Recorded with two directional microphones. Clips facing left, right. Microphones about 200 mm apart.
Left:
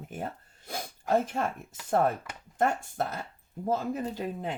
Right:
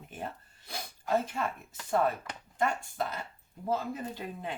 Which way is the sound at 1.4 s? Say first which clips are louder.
Left 3 dB; 45° left (ahead or behind).